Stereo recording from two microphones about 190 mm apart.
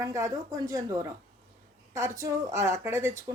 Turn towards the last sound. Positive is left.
turn(degrees=-15)  # may be behind; listen again after turning